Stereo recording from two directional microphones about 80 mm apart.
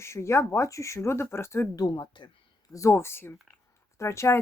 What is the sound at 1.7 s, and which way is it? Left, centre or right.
Speech, left.